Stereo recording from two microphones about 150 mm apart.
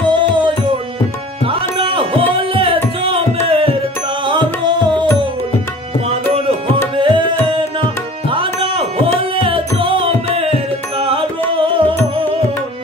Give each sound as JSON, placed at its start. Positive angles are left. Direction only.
{"t": 1.5, "sound": "music", "side_deg": -35}
{"t": 4.3, "sound": "tabla", "side_deg": -30}
{"t": 7.0, "sound": "music", "side_deg": -35}